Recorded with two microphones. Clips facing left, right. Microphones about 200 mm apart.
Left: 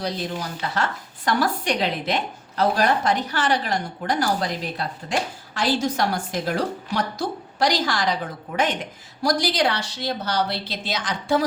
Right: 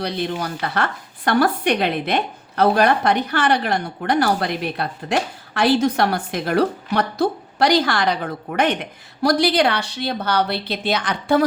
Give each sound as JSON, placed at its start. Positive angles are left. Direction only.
{"t": 0.0, "sound": "speech", "side_deg": -65}